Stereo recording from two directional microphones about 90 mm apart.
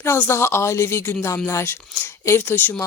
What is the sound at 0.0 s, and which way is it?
Speech, 30° left (ahead or behind).